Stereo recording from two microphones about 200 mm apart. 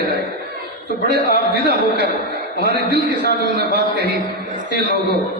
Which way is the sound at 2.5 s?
55° right (ahead or behind).